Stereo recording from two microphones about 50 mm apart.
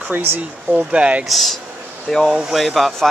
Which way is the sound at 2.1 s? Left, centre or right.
Centre.